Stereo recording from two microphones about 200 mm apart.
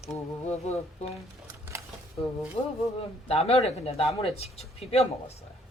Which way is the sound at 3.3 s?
30° left (ahead or behind).